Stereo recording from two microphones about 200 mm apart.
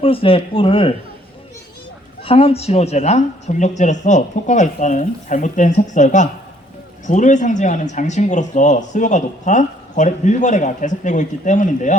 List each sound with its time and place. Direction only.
0.0 s speech: 25° left (ahead or behind)
2.2 s speech: 30° left (ahead or behind)